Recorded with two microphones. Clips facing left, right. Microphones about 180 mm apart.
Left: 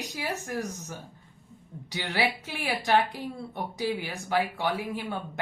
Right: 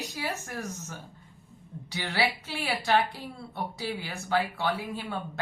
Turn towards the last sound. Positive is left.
turn(degrees=15)  # may be behind; listen again after turning